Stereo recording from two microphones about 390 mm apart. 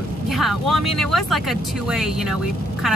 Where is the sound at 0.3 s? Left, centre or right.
Centre.